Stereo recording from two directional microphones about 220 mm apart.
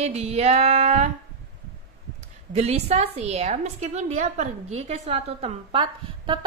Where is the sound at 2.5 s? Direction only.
30° right (ahead or behind).